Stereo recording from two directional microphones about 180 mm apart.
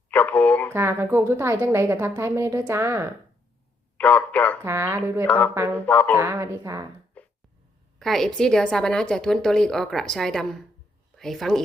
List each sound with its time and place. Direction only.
0.1 s a sound: 10° left (ahead or behind)
0.7 s a woman's voice: 15° right (ahead or behind)
3.9 s a man's voice: 10° left (ahead or behind)
4.6 s a woman's voice: 15° right (ahead or behind)
5.2 s a man's voice: 10° left (ahead or behind)
6.1 s a woman's voice: 10° right (ahead or behind)
7.2 s a sound: 10° left (ahead or behind)
7.9 s a woman's voice: centre (ahead or behind)